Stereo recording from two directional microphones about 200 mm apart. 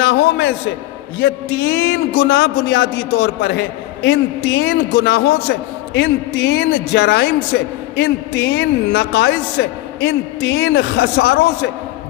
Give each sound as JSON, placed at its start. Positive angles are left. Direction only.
{"t": 0.0, "sound": "a man's voice", "side_deg": 55}